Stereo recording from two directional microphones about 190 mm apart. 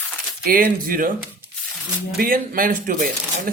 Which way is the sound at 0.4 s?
50° right (ahead or behind).